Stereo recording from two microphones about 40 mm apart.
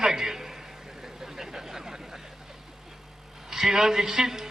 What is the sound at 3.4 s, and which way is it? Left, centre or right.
A man's voice, centre.